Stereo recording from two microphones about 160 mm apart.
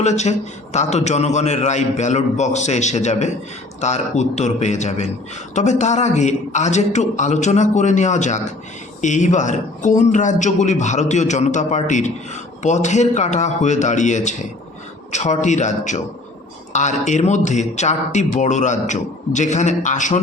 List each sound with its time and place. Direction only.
0.0 s a man's voice: 45° left (ahead or behind)